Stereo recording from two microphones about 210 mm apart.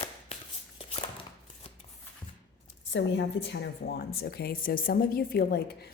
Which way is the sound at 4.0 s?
45° left (ahead or behind).